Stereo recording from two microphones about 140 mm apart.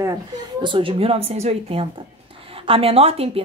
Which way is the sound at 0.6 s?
40° right (ahead or behind).